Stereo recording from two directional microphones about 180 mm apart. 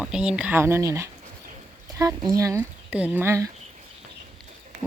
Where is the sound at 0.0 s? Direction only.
5° right (ahead or behind).